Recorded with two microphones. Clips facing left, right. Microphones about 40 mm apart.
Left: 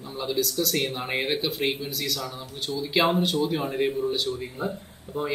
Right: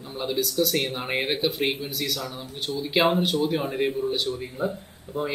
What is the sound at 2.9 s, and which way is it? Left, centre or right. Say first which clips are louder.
Speech: right 1 dB; centre.